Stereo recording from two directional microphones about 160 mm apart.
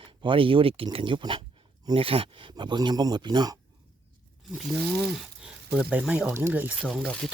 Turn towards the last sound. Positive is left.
turn(degrees=0)  # may be behind; listen again after turning